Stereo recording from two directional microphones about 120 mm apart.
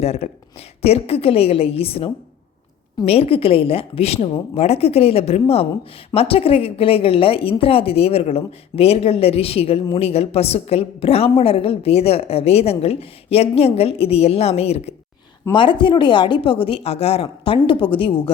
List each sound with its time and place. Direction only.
0.0 s a woman's voice: 60° left (ahead or behind)
3.1 s a woman's voice: 55° left (ahead or behind)
15.5 s speech: 45° left (ahead or behind)